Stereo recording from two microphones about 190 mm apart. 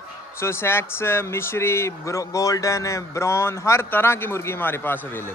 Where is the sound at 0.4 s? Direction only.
15° left (ahead or behind).